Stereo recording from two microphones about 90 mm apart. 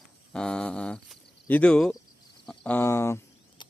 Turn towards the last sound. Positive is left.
turn(degrees=30)  # may be behind; listen again after turning